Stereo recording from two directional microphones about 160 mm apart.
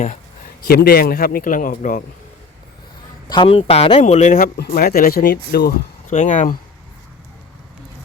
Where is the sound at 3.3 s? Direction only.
30° left (ahead or behind); by 6.6 s 50° left (ahead or behind).